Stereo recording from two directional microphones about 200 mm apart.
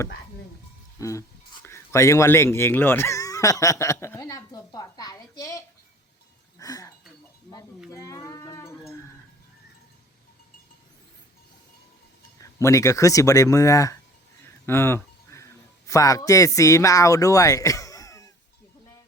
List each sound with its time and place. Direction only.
0.9 s speech: 15° left (ahead or behind)
6.6 s chink: 15° left (ahead or behind)
7.9 s livestock: 15° left (ahead or behind)
12.4 s a man's voice: 15° left (ahead or behind)